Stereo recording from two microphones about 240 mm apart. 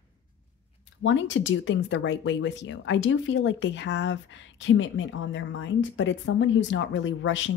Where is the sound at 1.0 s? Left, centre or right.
Left.